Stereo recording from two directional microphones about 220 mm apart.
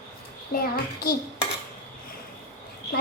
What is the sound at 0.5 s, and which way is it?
Speech, 45° left (ahead or behind).